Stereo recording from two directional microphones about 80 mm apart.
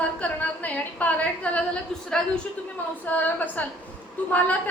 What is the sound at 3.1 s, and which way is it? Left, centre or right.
Speech, left.